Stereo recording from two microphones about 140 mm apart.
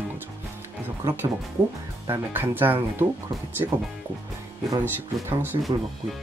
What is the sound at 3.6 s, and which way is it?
Speech, 30° right (ahead or behind).